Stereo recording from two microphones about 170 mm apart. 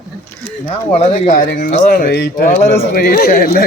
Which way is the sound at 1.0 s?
45° left (ahead or behind).